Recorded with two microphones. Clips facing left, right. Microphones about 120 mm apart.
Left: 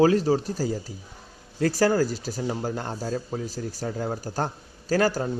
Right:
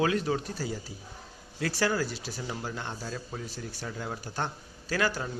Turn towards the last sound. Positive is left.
turn(degrees=40)  # may be behind; listen again after turning